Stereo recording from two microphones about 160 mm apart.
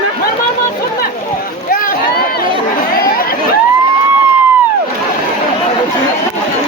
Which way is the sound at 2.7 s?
65° left (ahead or behind).